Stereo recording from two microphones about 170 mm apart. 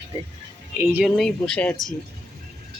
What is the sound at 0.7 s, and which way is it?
Speech, 15° right (ahead or behind).